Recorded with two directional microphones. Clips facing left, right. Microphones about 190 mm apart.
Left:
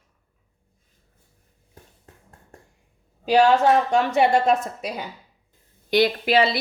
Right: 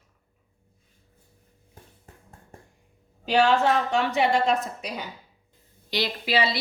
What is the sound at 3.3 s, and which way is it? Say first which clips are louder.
A woman's voice: left 4 dB; 40° left (ahead or behind).